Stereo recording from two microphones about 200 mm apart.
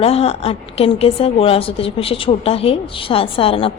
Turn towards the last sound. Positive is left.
turn(degrees=30)  # may be behind; listen again after turning